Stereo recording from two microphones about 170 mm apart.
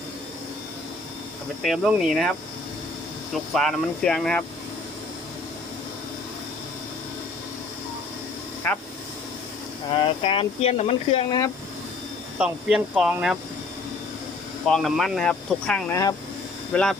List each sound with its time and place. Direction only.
1.6 s speech: 5° right (ahead or behind)
3.3 s speech: centre (ahead or behind)
8.7 s speech: 10° left (ahead or behind)
9.9 s speech: 30° left (ahead or behind)
12.4 s speech: 5° right (ahead or behind)
14.7 s speech: centre (ahead or behind)